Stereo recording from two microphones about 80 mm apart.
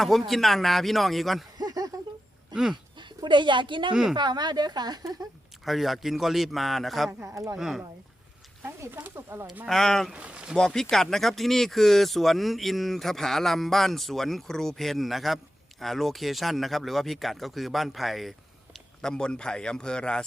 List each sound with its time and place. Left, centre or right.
0.0 s speech: centre
1.5 s a sound: right
2.5 s speech: right
2.9 s a sound: right
3.2 s speech: right
4.1 s speech: right
5.6 s speech: centre
8.6 s speech: right
9.6 s speech: centre
10.1 s speech: centre
10.6 s speech: centre